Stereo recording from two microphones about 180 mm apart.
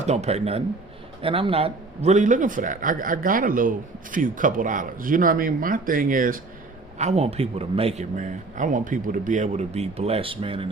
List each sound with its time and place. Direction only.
0.0 s a man's voice: 35° right (ahead or behind)
7.0 s speech: 35° right (ahead or behind)